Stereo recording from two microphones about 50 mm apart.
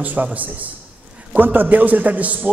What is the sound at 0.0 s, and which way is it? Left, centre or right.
A man's voice, right.